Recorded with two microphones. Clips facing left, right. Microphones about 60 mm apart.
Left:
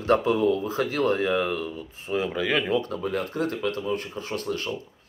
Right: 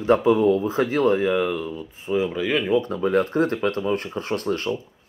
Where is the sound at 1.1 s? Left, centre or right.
Centre.